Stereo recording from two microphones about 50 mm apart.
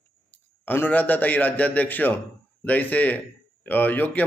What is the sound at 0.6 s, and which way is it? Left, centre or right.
A man's voice, left.